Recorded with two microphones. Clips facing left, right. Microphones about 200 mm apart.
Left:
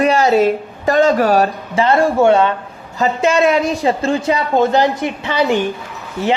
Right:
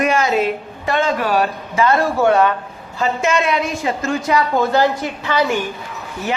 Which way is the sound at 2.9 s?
35° left (ahead or behind).